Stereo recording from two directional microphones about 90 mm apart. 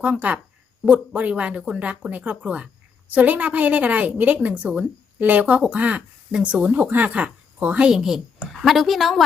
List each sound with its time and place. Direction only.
0.0 s a woman's voice: 15° right (ahead or behind); by 9.2 s centre (ahead or behind)